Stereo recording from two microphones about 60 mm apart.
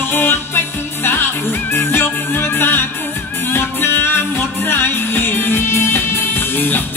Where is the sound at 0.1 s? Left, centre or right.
Left.